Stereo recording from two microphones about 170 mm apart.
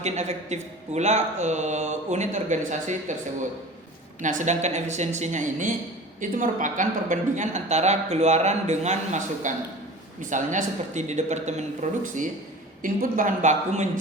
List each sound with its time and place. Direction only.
0.0 s a woman's voice: 40° right (ahead or behind)
4.2 s a woman's voice: 50° right (ahead or behind)